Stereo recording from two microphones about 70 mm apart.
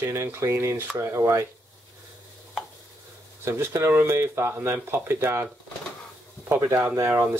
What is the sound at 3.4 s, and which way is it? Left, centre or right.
Speech, right.